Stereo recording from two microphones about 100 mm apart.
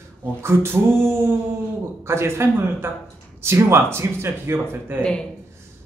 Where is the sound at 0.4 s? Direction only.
25° right (ahead or behind).